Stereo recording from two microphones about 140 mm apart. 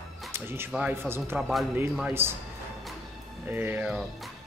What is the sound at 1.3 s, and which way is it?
Speech, centre (ahead or behind).